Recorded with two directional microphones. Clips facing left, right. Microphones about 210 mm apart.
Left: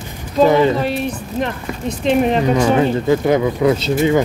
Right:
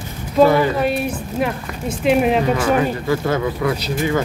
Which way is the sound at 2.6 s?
25° left (ahead or behind).